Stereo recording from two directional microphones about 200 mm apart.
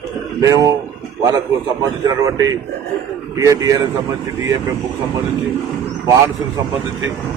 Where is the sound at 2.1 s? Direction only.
15° right (ahead or behind).